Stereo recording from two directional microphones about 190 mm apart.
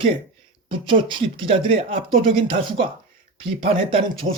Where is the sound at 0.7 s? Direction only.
25° right (ahead or behind).